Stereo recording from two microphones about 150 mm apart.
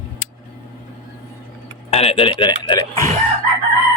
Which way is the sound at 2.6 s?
30° left (ahead or behind).